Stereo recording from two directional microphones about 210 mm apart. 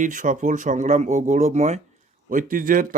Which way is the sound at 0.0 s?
40° right (ahead or behind).